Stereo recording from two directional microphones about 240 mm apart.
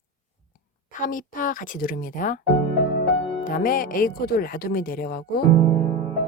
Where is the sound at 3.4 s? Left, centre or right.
Left.